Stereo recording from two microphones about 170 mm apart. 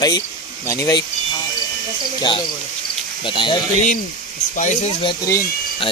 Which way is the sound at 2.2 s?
25° left (ahead or behind).